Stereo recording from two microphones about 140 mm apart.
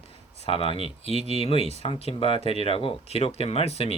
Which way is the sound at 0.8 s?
50° right (ahead or behind).